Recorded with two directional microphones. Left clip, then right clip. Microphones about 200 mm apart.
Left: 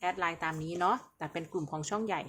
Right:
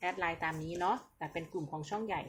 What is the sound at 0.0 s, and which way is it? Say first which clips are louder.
Speech: left 2 dB; 10° left (ahead or behind).